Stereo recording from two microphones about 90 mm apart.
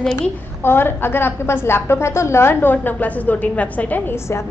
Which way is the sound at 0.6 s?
25° left (ahead or behind).